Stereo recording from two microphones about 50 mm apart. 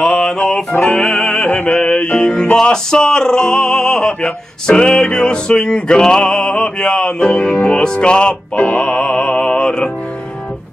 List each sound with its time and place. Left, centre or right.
0.0 s music: centre